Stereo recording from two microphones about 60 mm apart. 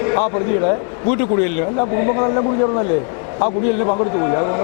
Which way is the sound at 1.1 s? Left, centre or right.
Centre.